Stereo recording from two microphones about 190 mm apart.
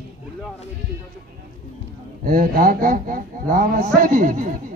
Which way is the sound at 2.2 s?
50° right (ahead or behind).